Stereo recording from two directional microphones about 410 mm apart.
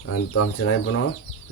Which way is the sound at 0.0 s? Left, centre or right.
Left.